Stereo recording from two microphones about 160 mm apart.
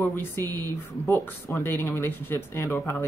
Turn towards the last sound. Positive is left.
turn(degrees=15)  # may be behind; listen again after turning